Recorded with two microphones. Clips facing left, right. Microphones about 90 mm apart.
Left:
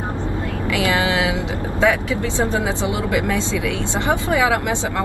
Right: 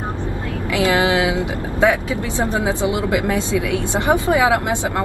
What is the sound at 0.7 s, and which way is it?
Vehicle, 25° right (ahead or behind).